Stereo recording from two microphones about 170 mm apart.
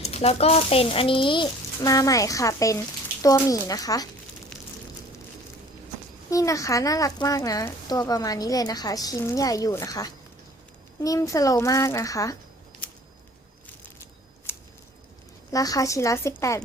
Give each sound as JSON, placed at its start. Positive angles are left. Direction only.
{"t": 0.0, "sound": "speech", "side_deg": 40}
{"t": 6.3, "sound": "speech", "side_deg": 20}
{"t": 15.5, "sound": "speech", "side_deg": 20}